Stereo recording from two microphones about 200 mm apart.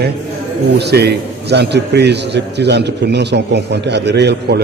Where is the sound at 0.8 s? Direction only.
55° right (ahead or behind).